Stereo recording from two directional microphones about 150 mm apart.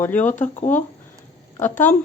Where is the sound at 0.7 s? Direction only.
10° left (ahead or behind).